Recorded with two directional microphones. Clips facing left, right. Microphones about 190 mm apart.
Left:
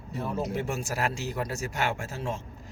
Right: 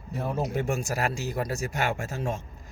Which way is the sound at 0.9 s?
40° right (ahead or behind).